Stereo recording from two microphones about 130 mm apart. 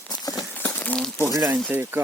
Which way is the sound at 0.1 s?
30° left (ahead or behind).